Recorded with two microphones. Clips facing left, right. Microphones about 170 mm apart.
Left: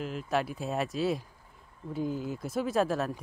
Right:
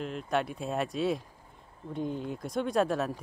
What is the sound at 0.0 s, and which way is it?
Speech, centre (ahead or behind).